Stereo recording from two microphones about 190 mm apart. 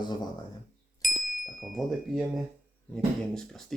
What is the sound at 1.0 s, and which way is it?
Ding, centre (ahead or behind).